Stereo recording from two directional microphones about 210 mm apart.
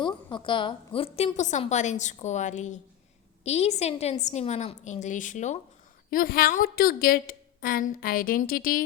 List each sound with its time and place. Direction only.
0.0 s a woman's voice: 25° left (ahead or behind); by 8.8 s 40° left (ahead or behind)